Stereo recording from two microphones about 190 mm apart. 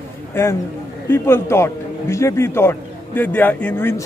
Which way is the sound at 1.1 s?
15° left (ahead or behind).